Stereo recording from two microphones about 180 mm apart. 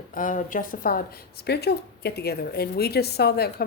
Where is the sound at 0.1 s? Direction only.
45° left (ahead or behind).